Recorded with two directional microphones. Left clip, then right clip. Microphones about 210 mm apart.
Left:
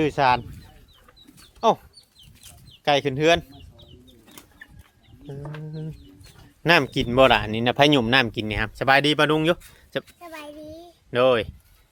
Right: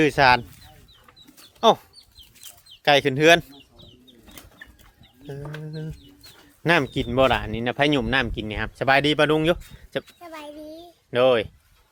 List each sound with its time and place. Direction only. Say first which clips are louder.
0.0 s speech: right 3 dB; 15° right (ahead or behind)
1.4 s chicken: right 3 dB; 20° right (ahead or behind)
5.6 s speech: right 1 dB; 15° right (ahead or behind)
6.6 s speech: left 2 dB; 10° left (ahead or behind)